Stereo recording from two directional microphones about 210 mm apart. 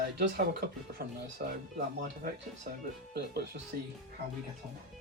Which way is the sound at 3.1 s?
50° right (ahead or behind).